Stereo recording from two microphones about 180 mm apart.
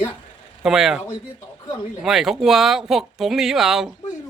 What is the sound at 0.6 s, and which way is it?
Speech, centre (ahead or behind).